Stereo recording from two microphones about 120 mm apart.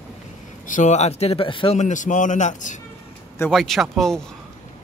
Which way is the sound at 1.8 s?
90° left.